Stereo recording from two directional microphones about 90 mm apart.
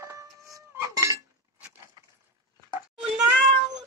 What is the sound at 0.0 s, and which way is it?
Livestock, 30° right (ahead or behind).